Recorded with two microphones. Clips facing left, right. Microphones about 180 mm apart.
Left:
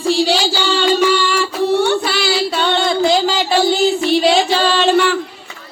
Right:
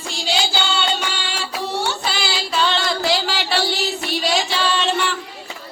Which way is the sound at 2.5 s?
60° left (ahead or behind).